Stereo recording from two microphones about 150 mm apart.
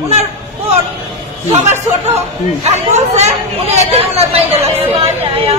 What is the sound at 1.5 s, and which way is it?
Speech, 50° right (ahead or behind).